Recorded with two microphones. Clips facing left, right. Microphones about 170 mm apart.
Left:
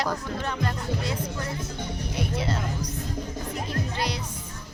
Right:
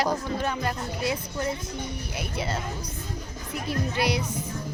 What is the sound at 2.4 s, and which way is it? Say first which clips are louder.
Speech: left 2 dB; centre (ahead or behind).